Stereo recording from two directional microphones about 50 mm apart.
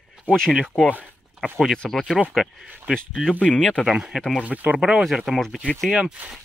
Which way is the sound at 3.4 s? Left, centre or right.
Centre.